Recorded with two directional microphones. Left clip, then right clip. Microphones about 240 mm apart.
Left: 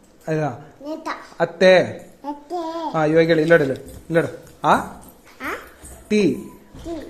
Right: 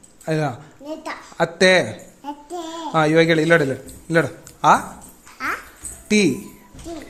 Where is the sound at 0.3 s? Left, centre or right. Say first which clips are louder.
Even; right.